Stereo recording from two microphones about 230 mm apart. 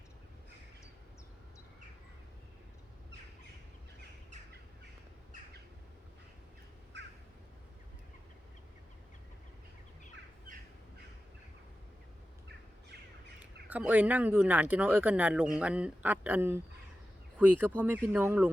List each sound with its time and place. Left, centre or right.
6.9 s crow: right
13.4 s speech: centre